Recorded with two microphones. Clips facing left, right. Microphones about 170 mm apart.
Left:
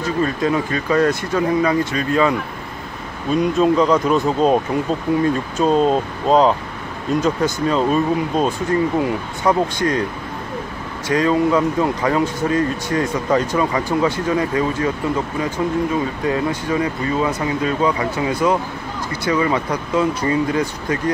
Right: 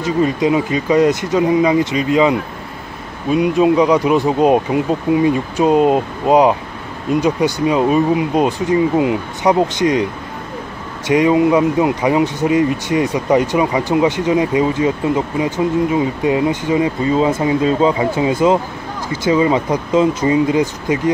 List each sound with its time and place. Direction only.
0.0 s speech: 15° right (ahead or behind)
11.1 s speech: 15° right (ahead or behind)